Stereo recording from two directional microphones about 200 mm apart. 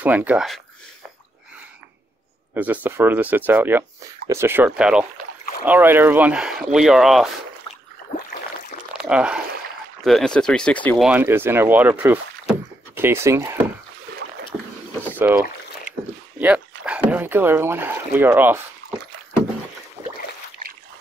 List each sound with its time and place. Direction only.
0.0 s speech: 10° right (ahead or behind)
2.5 s speech: 10° right (ahead or behind)
8.9 s speech: 5° right (ahead or behind)
11.1 s speech: 10° right (ahead or behind)
15.0 s speech: 10° right (ahead or behind)
15.9 s a sound: 40° right (ahead or behind)
16.3 s speech: 5° right (ahead or behind)